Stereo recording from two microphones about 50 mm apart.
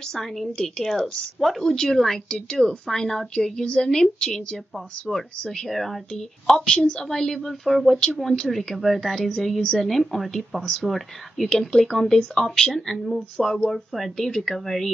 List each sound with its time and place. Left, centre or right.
0.1 s a woman's voice: centre
5.4 s a woman's voice: centre
5.7 s a woman's voice: centre
10.6 s a woman's voice: centre
10.9 s a woman's voice: centre